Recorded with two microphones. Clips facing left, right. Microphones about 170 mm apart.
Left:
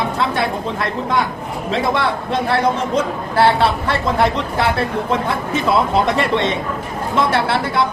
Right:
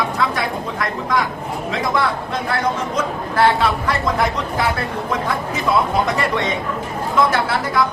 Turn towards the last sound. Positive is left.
turn(degrees=30)  # may be behind; listen again after turning